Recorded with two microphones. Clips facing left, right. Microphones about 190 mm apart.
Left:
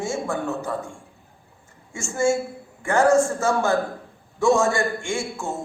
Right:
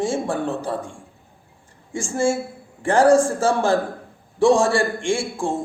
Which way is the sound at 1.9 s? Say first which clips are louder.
Right 1 dB; 30° right (ahead or behind).